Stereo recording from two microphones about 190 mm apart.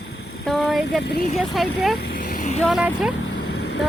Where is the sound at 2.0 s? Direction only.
50° left (ahead or behind).